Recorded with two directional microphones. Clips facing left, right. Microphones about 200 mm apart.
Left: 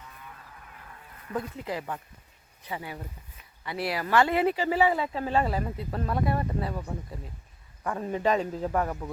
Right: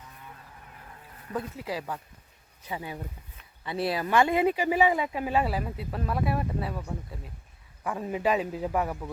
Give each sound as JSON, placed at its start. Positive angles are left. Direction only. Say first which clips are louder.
{"t": 1.4, "sound": "speech", "louder": "even", "side_deg": -10}
{"t": 2.6, "sound": "speech", "louder": "right 1 dB", "side_deg": -20}